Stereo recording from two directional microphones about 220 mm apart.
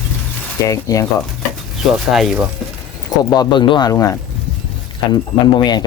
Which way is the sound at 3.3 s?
20° left (ahead or behind).